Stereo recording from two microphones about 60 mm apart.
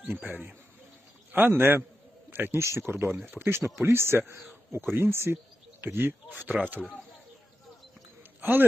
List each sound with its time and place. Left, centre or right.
0.1 s speech: right
1.3 s a man's voice: right
2.6 s a man's voice: right
8.4 s a man's voice: right